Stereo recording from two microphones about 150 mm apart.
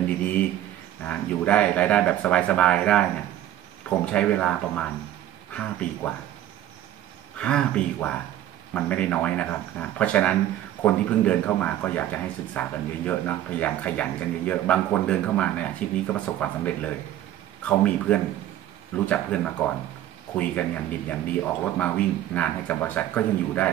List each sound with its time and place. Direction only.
0.0 s speech: 10° left (ahead or behind)
7.3 s speech: 5° left (ahead or behind)